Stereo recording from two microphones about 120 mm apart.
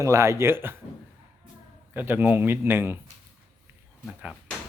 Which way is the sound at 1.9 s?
15° right (ahead or behind).